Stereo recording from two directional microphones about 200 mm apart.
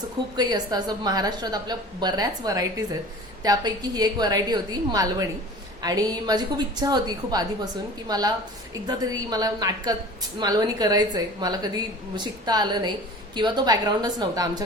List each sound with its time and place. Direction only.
0.3 s a woman's voice: 20° right (ahead or behind)